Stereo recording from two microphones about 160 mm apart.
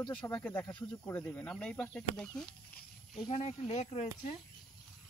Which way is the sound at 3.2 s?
45° left (ahead or behind).